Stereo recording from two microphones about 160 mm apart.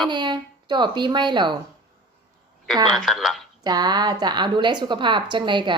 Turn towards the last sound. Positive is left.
turn(degrees=-30)  # may be behind; listen again after turning